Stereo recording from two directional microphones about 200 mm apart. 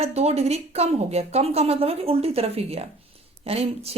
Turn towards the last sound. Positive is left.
turn(degrees=-30)  # may be behind; listen again after turning